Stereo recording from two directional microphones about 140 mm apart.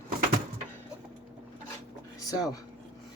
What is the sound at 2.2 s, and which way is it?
Speech, 25° left (ahead or behind).